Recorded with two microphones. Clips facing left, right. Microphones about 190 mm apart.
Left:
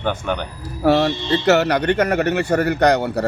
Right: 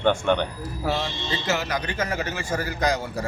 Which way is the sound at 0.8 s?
65° left (ahead or behind).